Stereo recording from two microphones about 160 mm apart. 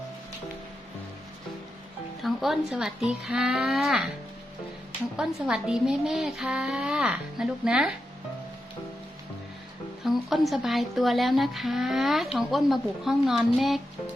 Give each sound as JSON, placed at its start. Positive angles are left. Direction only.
{"t": 2.2, "sound": "speech", "side_deg": 0}
{"t": 5.1, "sound": "speech", "side_deg": -5}
{"t": 10.0, "sound": "speech", "side_deg": 0}